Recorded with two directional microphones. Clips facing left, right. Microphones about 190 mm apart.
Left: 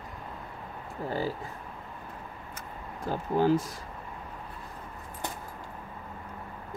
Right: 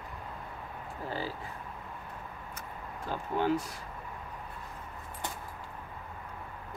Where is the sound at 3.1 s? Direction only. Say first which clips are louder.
Left 5 dB; 35° left (ahead or behind).